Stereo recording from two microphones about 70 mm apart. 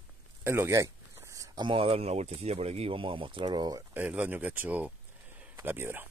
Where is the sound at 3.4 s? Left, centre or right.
Right.